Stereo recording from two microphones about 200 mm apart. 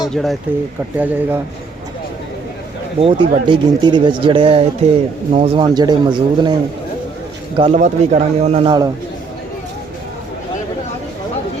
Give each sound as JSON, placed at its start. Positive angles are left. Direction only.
{"t": 0.1, "sound": "speech", "side_deg": 0}
{"t": 3.0, "sound": "a man's voice", "side_deg": -25}